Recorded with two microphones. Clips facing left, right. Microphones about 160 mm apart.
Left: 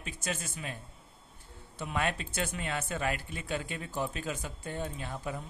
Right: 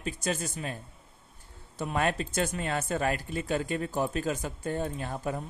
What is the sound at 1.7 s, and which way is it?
Speech, 40° right (ahead or behind).